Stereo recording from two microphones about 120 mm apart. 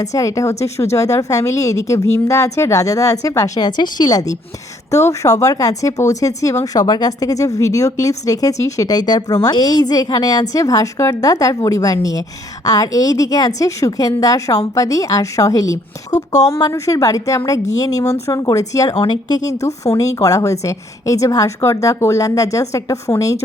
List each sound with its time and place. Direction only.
0.0 s a woman's voice: 30° left (ahead or behind)
16.1 s speech: 75° left (ahead or behind)
16.5 s speech: 30° left (ahead or behind)